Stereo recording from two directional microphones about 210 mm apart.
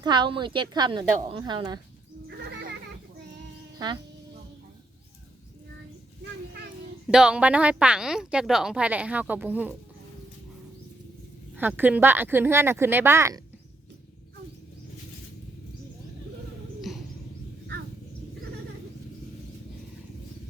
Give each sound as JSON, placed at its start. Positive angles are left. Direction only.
{"t": 0.0, "sound": "a woman's voice", "side_deg": -20}
{"t": 2.4, "sound": "music", "side_deg": -50}
{"t": 7.1, "sound": "a woman's voice", "side_deg": -5}
{"t": 11.5, "sound": "speech", "side_deg": -10}
{"t": 16.9, "sound": "wild animals", "side_deg": 0}